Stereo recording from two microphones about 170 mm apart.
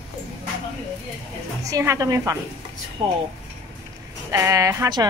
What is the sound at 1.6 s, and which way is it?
Speech, 20° right (ahead or behind).